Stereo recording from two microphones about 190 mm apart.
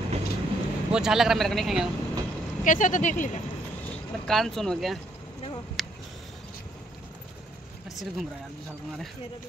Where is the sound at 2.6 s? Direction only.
40° left (ahead or behind).